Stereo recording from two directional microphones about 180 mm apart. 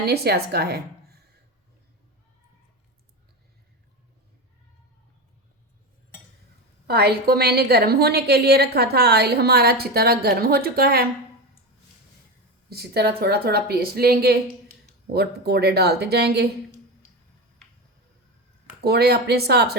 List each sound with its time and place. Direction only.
0.0 s a woman's voice: 60° right (ahead or behind)
6.8 s a woman's voice: 60° right (ahead or behind)
12.7 s a woman's voice: 65° right (ahead or behind)
18.8 s a woman's voice: 65° right (ahead or behind)